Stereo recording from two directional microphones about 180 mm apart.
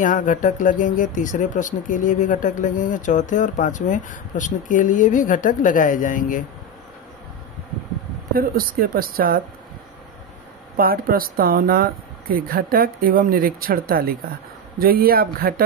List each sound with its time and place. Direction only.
0.0 s speech: 45° left (ahead or behind)
8.3 s speech: 55° right (ahead or behind)
10.8 s speech: 55° right (ahead or behind)